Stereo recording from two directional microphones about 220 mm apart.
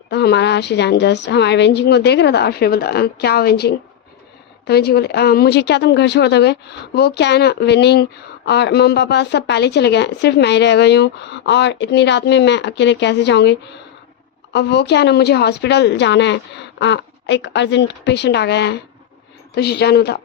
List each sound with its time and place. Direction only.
0.1 s speech: 50° left (ahead or behind)